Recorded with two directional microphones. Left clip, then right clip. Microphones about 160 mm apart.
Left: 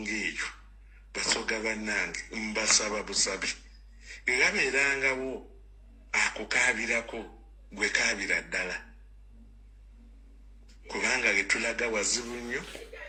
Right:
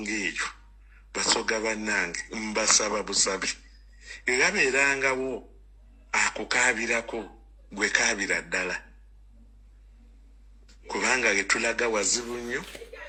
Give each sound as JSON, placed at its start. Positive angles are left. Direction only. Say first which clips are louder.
{"t": 0.0, "sound": "a sound", "louder": "right 3 dB", "side_deg": -30}
{"t": 0.9, "sound": "a man's voice", "louder": "right 4 dB", "side_deg": -30}
{"t": 10.7, "sound": "a man's voice", "louder": "right 3 dB", "side_deg": -30}